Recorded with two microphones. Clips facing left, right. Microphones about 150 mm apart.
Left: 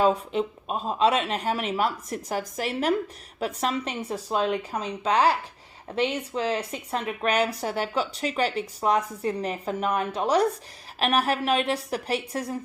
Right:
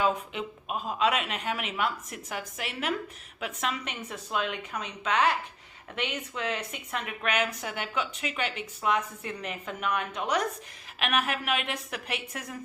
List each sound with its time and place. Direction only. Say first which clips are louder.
0.0 s a woman's voice: left 6 dB; 35° left (ahead or behind)